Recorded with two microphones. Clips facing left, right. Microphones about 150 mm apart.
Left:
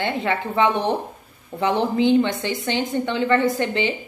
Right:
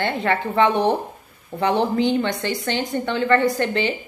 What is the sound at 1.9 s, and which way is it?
A woman's voice, 15° left (ahead or behind).